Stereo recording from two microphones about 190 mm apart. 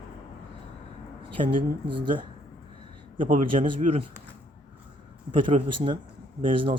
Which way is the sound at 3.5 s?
35° right (ahead or behind).